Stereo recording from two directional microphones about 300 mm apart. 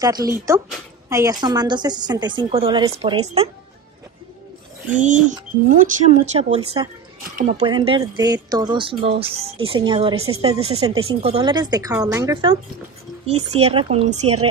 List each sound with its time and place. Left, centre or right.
0.0 s speech: centre
4.9 s a woman's voice: right